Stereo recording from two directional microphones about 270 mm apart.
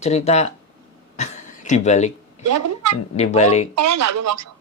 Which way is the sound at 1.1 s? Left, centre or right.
Left.